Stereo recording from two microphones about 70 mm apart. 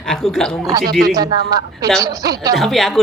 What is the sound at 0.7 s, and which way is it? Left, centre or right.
Speech, right.